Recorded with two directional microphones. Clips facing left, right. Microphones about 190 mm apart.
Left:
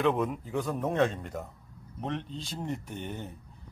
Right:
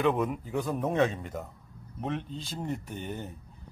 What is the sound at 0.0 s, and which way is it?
Speech, centre (ahead or behind).